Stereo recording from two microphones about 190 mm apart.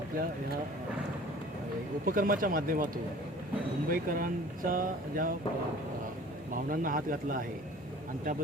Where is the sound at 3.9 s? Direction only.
50° right (ahead or behind).